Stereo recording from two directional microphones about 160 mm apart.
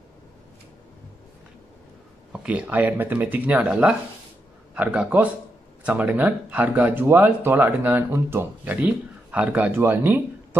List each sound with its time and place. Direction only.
2.3 s speech: 5° right (ahead or behind)